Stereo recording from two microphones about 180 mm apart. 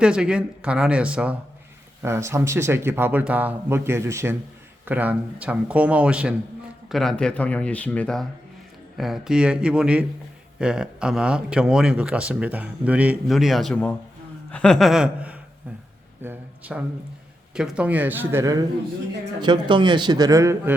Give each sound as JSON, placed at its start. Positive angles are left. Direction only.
{"t": 0.0, "sound": "speech", "side_deg": -5}
{"t": 16.2, "sound": "a sound", "side_deg": -10}
{"t": 17.5, "sound": "a man's voice", "side_deg": -5}